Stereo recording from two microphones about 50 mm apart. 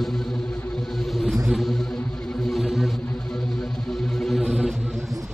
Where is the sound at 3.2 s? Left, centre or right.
Centre.